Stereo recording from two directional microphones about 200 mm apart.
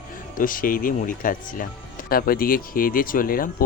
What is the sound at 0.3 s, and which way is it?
Speech, 45° left (ahead or behind).